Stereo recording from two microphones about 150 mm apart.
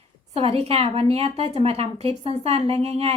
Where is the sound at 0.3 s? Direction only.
45° right (ahead or behind).